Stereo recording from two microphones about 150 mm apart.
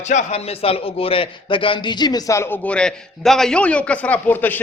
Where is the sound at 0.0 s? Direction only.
50° left (ahead or behind).